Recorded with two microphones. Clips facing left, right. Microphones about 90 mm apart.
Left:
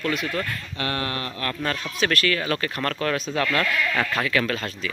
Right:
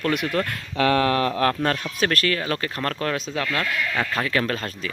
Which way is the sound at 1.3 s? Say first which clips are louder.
Right 9 dB; 90° right.